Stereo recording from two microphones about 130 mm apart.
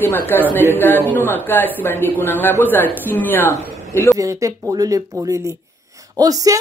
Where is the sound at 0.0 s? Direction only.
15° left (ahead or behind).